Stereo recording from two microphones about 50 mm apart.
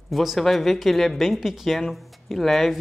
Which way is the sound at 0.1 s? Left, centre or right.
Centre.